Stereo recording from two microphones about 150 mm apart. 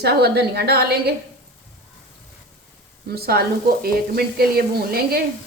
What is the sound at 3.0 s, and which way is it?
A woman's voice, 90° right.